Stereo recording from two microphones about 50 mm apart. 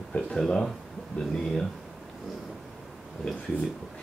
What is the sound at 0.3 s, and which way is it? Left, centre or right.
Speech, centre.